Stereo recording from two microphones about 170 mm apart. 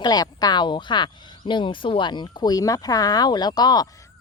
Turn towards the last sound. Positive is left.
turn(degrees=25)  # may be behind; listen again after turning